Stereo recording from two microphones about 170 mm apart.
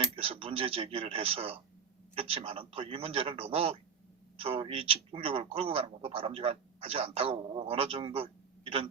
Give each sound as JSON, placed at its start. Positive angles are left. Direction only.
{"t": 0.2, "sound": "a man's voice", "side_deg": -35}